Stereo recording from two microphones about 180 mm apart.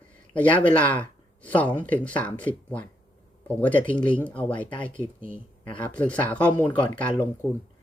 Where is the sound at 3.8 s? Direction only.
25° left (ahead or behind).